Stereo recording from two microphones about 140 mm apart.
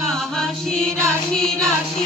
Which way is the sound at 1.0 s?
5° left (ahead or behind).